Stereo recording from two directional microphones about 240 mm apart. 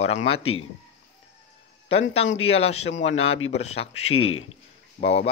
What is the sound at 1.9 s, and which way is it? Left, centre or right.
Speech, left.